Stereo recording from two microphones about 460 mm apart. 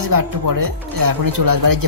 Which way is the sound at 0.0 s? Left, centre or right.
Right.